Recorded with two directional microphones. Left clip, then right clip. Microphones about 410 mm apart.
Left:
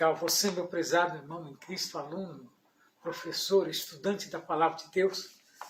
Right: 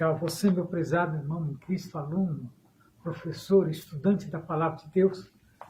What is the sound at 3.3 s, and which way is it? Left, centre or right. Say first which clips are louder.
Speech: right 3 dB; right.